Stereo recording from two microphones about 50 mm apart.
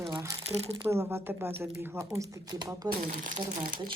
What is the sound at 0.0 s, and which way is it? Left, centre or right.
Crumpling, right.